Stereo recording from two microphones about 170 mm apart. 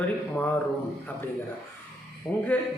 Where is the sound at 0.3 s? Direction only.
10° left (ahead or behind).